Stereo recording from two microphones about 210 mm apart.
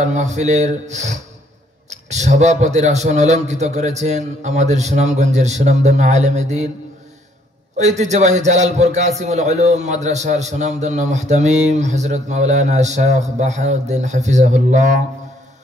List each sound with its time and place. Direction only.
0.0 s a man's voice: 35° right (ahead or behind)
7.7 s a man's voice: 35° right (ahead or behind)